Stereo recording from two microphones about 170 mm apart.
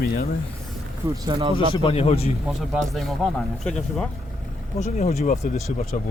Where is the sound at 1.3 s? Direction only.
35° right (ahead or behind).